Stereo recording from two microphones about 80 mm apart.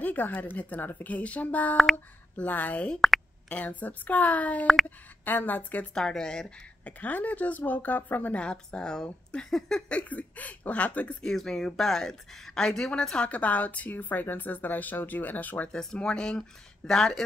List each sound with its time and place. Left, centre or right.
0.0 s a woman's voice: left
5.9 s speech: centre
6.9 s a woman's voice: centre
11.3 s speech: centre; by 15.7 s left
15.7 s speech: centre